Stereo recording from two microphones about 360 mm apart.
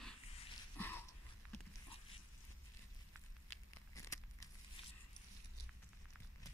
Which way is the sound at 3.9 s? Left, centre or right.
Centre.